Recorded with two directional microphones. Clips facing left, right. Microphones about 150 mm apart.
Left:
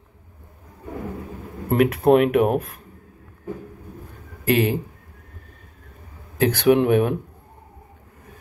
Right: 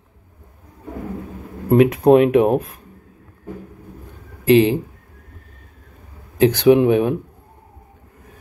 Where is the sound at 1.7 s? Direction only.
20° right (ahead or behind).